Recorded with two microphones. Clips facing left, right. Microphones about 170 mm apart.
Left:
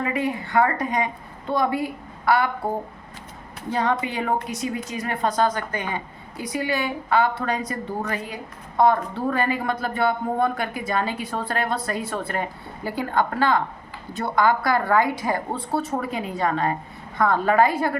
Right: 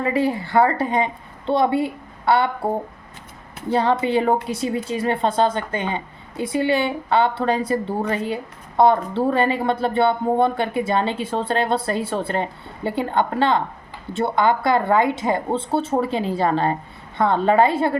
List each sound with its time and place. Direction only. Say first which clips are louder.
0.0 s a woman's voice: right 4 dB; 30° right (ahead or behind)
3.7 s speech: right 5 dB; 30° right (ahead or behind)